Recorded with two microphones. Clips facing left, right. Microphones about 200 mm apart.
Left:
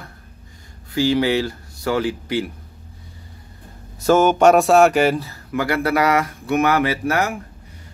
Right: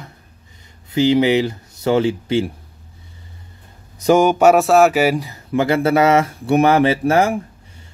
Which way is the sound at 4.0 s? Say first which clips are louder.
Right 1 dB; 15° right (ahead or behind).